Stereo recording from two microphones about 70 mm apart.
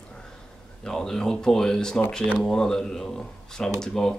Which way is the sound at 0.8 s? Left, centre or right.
Centre.